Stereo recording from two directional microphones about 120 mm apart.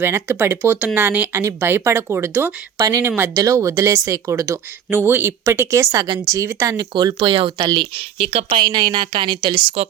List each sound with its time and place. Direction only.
0.0 s speech: 20° right (ahead or behind)
2.7 s speech: 30° right (ahead or behind)
3.1 s speech: 15° right (ahead or behind)
3.3 s speech: 25° right (ahead or behind)
6.9 s speech: 40° right (ahead or behind); by 8.6 s 60° right (ahead or behind)
8.6 s speech: 40° right (ahead or behind)